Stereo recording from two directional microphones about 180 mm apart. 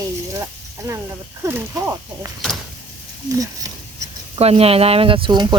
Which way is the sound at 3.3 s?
20° right (ahead or behind).